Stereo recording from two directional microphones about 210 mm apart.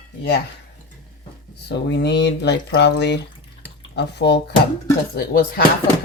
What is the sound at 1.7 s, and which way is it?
Speech, 55° left (ahead or behind).